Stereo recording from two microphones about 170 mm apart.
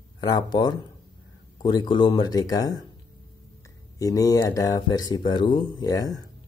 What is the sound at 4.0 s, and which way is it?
Speech, 20° left (ahead or behind).